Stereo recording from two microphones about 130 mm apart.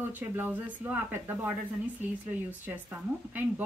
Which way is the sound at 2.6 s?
15° right (ahead or behind).